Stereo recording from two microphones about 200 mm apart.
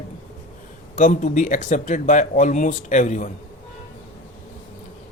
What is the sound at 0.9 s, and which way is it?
A man's voice, 40° left (ahead or behind).